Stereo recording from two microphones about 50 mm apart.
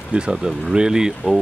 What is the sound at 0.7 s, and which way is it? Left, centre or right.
Speech, centre.